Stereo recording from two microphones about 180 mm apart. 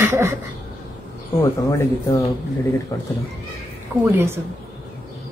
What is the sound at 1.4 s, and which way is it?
Speech, 15° left (ahead or behind).